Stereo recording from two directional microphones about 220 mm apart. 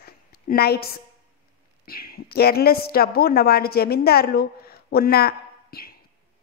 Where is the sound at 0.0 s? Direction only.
45° left (ahead or behind).